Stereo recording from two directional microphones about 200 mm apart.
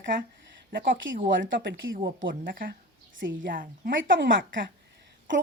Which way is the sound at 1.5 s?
65° right (ahead or behind).